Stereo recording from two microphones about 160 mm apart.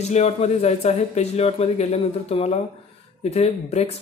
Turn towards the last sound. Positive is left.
turn(degrees=40)  # may be behind; listen again after turning